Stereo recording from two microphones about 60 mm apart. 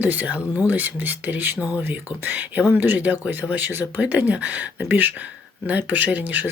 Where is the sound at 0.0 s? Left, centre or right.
Right.